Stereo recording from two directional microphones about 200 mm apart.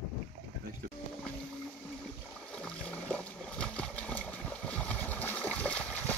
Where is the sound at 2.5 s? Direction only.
5° left (ahead or behind).